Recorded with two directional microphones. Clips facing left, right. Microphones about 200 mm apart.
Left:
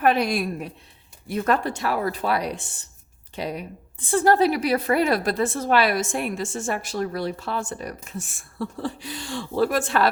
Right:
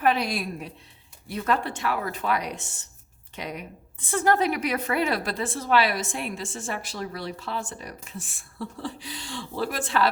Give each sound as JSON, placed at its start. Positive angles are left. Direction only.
{"t": 0.0, "sound": "a woman's voice", "side_deg": 50}